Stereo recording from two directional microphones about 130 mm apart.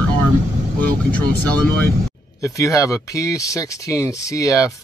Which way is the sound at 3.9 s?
25° left (ahead or behind).